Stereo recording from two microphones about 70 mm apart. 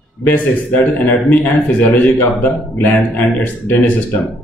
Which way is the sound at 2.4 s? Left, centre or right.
Left.